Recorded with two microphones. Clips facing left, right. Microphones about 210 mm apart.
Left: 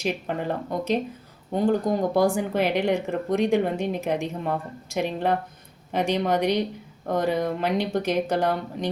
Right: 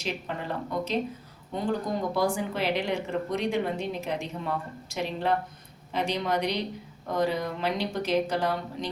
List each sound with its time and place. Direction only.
0.0 s speech: 55° left (ahead or behind)
5.9 s speech: 55° left (ahead or behind)